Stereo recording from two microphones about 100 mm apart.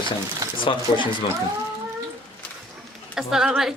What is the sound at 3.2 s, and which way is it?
Speech, 5° right (ahead or behind).